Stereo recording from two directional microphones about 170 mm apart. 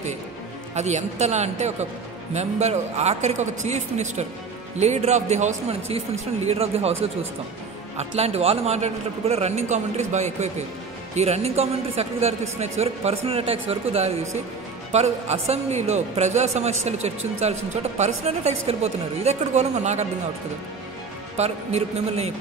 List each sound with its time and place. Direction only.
0.7 s a man's voice: 40° right (ahead or behind)
8.2 s a man's voice: 35° right (ahead or behind)
21.4 s a man's voice: 40° right (ahead or behind)